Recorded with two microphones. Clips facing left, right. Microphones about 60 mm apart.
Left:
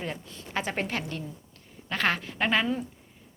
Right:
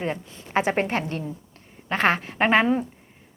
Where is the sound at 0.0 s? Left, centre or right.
Right.